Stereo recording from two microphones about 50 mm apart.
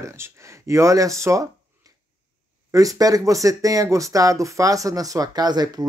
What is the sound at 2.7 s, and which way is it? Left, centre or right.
Speech, right.